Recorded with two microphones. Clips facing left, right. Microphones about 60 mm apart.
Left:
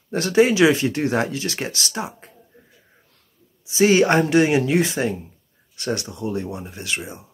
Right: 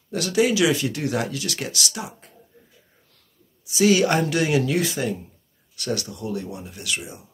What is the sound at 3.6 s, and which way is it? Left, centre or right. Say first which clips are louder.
Speech: left 2 dB; left.